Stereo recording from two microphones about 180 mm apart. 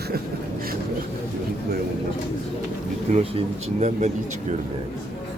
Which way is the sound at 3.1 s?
35° right (ahead or behind).